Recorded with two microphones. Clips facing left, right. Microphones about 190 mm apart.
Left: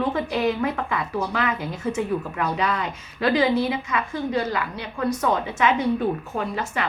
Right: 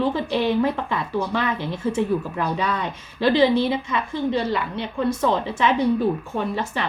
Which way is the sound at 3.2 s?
30° right (ahead or behind).